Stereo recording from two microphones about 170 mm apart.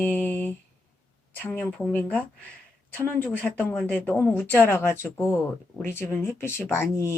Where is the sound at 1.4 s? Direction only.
10° left (ahead or behind).